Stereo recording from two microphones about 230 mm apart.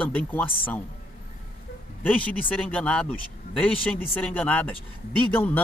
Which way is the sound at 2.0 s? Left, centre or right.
Centre.